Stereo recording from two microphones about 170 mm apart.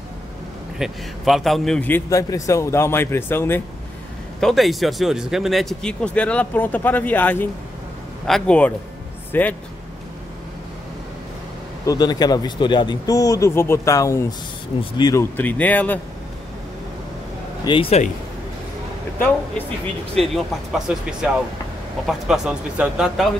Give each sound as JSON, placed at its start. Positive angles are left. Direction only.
{"t": 0.7, "sound": "a man's voice", "side_deg": 0}
{"t": 4.4, "sound": "a man's voice", "side_deg": 0}
{"t": 11.8, "sound": "speech", "side_deg": 20}
{"t": 15.3, "sound": "a man's voice", "side_deg": 10}
{"t": 17.6, "sound": "speech", "side_deg": 35}
{"t": 20.2, "sound": "speech", "side_deg": 0}